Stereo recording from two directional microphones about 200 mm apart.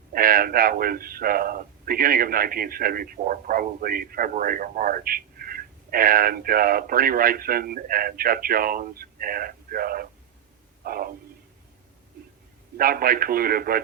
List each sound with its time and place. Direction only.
0.1 s a man's voice: 45° right (ahead or behind)
12.7 s a man's voice: 45° right (ahead or behind)